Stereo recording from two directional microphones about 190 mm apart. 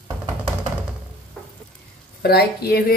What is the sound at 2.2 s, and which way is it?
Speech, 55° left (ahead or behind).